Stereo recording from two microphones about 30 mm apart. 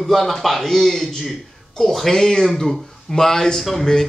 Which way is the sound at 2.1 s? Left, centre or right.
Centre.